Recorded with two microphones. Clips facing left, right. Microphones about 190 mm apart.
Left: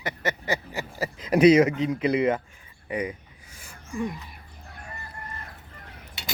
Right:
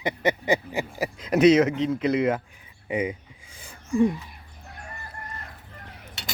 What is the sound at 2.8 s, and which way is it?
Speech, 10° right (ahead or behind).